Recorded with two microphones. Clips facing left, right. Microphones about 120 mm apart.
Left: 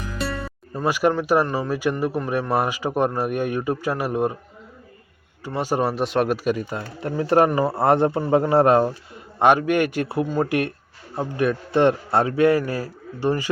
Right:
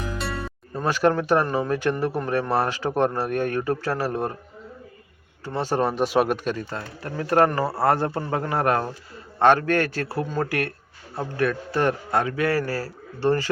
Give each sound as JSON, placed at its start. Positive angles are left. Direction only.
{"t": 0.7, "sound": "speech", "side_deg": 10}
{"t": 5.5, "sound": "a man's voice", "side_deg": 10}